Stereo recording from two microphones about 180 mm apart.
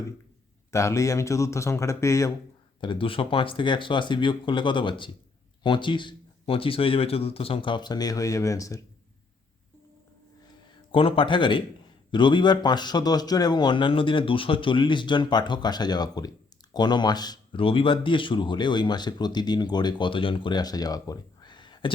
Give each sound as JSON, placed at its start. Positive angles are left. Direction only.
{"t": 0.7, "sound": "speech", "side_deg": 15}
{"t": 2.8, "sound": "speech", "side_deg": 30}
{"t": 10.9, "sound": "speech", "side_deg": 30}